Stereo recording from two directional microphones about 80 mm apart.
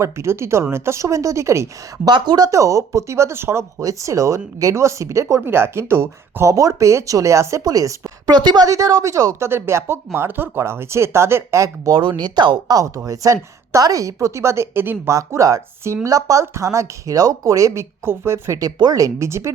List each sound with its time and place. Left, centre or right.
0.0 s speech: right
2.0 s speech: right
2.5 s speech: right
8.3 s speech: right
8.6 s speech: right
11.9 s speech: right
13.1 s speech: right
15.1 s speech: right
18.0 s speech: right
18.6 s speech: right